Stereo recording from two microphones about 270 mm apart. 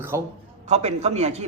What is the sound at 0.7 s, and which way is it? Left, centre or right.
Speech, right.